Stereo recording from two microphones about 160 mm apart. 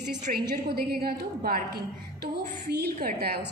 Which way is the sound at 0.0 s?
50° right (ahead or behind).